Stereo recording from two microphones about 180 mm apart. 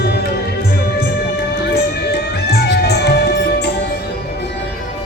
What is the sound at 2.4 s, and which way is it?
Music, 65° left (ahead or behind).